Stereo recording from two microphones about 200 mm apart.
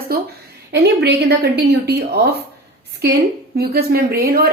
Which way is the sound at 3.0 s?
55° right (ahead or behind).